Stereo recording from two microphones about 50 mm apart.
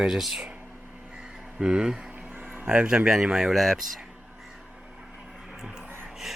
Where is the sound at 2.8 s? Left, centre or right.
Centre.